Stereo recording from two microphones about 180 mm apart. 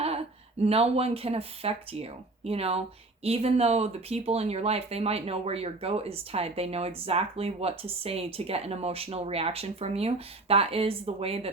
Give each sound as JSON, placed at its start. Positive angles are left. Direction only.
{"t": 0.6, "sound": "speech", "side_deg": -35}